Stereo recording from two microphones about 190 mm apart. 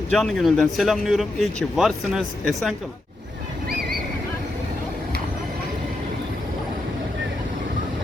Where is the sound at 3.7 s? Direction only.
55° right (ahead or behind).